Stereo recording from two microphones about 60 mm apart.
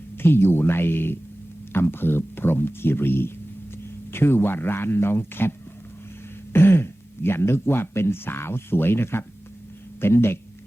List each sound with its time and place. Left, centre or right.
0.2 s speech: left